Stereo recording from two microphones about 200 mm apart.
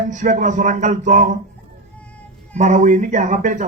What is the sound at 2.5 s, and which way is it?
Speech, 35° right (ahead or behind).